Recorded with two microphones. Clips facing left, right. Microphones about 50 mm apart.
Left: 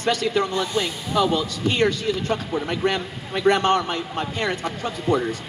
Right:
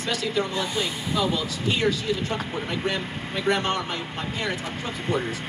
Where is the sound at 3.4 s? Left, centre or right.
Left.